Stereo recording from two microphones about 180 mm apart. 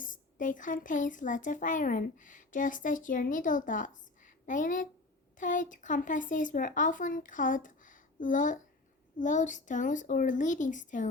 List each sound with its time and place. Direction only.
0.0 s speech: 45° left (ahead or behind)